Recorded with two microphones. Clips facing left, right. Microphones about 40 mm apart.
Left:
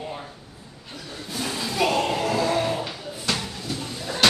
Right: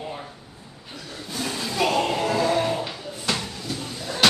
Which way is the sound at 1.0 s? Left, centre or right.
Centre.